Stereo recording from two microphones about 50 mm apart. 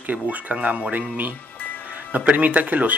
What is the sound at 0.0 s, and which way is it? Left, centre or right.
Speech, right.